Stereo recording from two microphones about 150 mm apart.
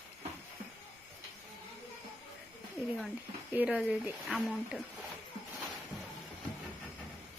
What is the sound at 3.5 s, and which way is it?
Speech, 10° right (ahead or behind).